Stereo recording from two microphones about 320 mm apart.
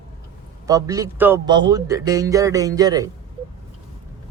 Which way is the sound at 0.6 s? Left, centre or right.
Centre.